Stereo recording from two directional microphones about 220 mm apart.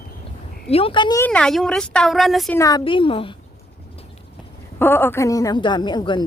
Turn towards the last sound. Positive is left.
turn(degrees=20)  # may be behind; listen again after turning